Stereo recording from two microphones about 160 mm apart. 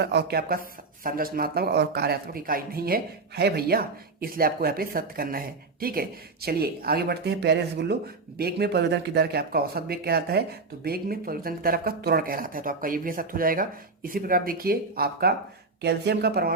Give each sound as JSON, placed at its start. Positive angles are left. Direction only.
{"t": 0.0, "sound": "speech", "side_deg": -90}
{"t": 15.8, "sound": "speech", "side_deg": -90}